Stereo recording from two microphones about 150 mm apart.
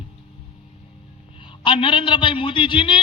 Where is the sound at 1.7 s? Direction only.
35° left (ahead or behind).